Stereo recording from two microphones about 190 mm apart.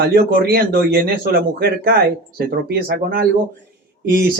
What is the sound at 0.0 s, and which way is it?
A man's voice, 55° right (ahead or behind).